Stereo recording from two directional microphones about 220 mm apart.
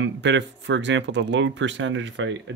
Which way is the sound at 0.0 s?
55° right (ahead or behind).